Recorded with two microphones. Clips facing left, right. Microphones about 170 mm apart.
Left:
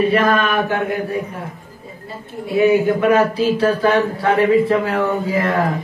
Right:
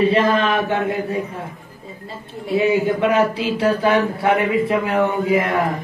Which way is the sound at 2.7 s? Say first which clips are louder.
Left 2 dB; 25° right (ahead or behind).